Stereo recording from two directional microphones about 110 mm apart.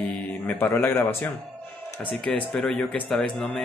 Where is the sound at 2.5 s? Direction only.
5° left (ahead or behind).